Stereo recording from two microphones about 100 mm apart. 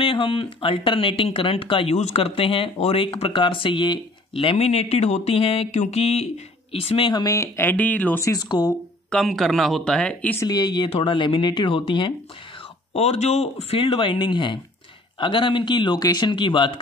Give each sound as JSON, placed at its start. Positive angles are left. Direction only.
{"t": 0.0, "sound": "speech", "side_deg": 60}
{"t": 6.7, "sound": "speech", "side_deg": 75}
{"t": 7.2, "sound": "speech", "side_deg": 25}
{"t": 8.2, "sound": "speech", "side_deg": 40}
{"t": 9.1, "sound": "speech", "side_deg": 5}
{"t": 10.4, "sound": "speech", "side_deg": 45}
{"t": 12.9, "sound": "speech", "side_deg": 90}